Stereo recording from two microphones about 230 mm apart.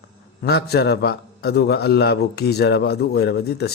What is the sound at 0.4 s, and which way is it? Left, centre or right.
A man's voice, left.